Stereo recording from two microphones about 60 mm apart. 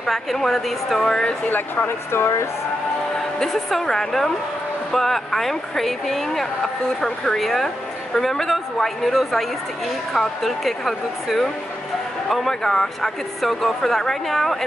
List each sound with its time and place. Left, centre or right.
0.0 s speech: centre
1.9 s speech: left
3.2 s a woman's voice: centre